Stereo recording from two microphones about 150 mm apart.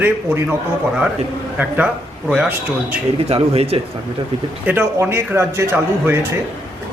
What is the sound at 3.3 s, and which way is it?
Speech, 40° right (ahead or behind).